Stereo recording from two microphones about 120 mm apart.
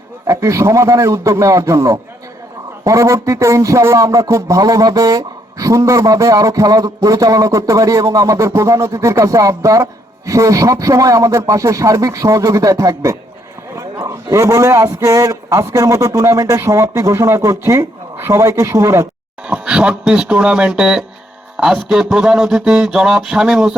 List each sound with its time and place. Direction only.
0.3 s speech: 25° right (ahead or behind)
19.5 s speech: 10° right (ahead or behind)
21.6 s a sound: 5° right (ahead or behind)